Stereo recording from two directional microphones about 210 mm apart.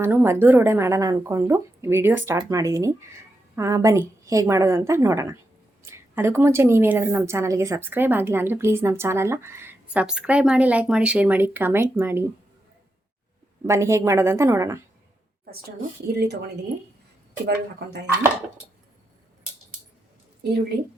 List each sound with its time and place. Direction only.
0.0 s a woman's voice: 10° right (ahead or behind)
13.7 s a woman's voice: 15° right (ahead or behind)
16.1 s speech: 50° right (ahead or behind)
17.4 s speech: 55° right (ahead or behind)